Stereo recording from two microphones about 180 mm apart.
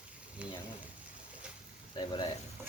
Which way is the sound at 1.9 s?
25° left (ahead or behind).